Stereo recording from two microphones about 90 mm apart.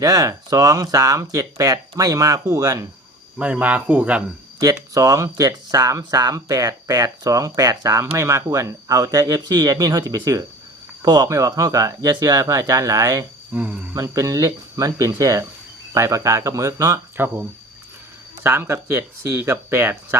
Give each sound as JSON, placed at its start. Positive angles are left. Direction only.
{"t": 0.0, "sound": "speech", "side_deg": -40}
{"t": 3.3, "sound": "speech", "side_deg": -15}
{"t": 4.6, "sound": "speech", "side_deg": -40}
{"t": 8.1, "sound": "speech", "side_deg": -30}
{"t": 13.5, "sound": "speech", "side_deg": -20}
{"t": 13.9, "sound": "speech", "side_deg": -40}
{"t": 17.2, "sound": "speech", "side_deg": -25}
{"t": 18.4, "sound": "speech", "side_deg": -25}